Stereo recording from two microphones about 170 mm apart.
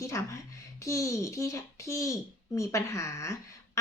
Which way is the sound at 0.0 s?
20° left (ahead or behind).